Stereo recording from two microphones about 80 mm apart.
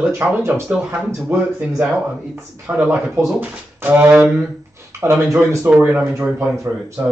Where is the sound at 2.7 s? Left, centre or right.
Centre.